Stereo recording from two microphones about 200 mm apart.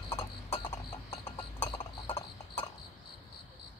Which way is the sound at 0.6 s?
25° left (ahead or behind).